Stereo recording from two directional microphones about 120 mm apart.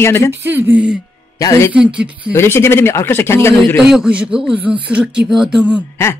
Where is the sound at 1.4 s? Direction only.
30° left (ahead or behind).